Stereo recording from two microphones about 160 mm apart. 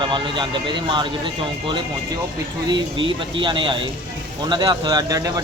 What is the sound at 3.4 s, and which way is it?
A man's voice, 30° right (ahead or behind).